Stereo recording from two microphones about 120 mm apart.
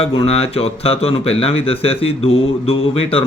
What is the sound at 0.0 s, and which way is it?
Speech, 50° left (ahead or behind).